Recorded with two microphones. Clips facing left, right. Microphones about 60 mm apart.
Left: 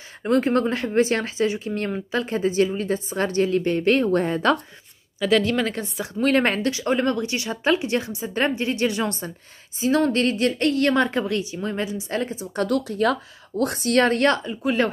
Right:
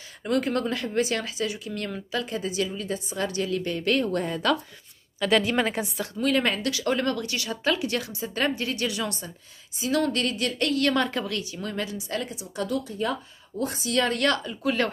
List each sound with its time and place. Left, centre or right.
0.2 s speech: left
5.2 s a woman's voice: centre
6.1 s speech: left
6.7 s a woman's voice: left
12.5 s speech: left
14.1 s a woman's voice: left